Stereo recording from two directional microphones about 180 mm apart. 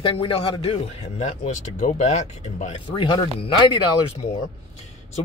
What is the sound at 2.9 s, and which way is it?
Speech, 25° left (ahead or behind).